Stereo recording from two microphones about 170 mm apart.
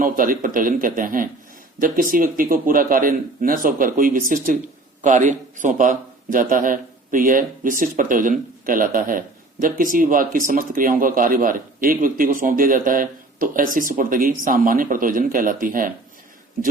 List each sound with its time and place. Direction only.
0.0 s speech: 55° right (ahead or behind)